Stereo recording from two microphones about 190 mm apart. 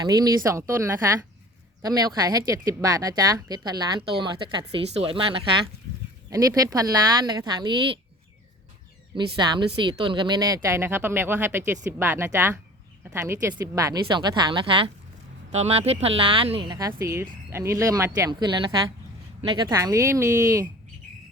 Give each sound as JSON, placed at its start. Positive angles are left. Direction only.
{"t": 0.0, "sound": "speech", "side_deg": -20}
{"t": 9.1, "sound": "speech", "side_deg": -25}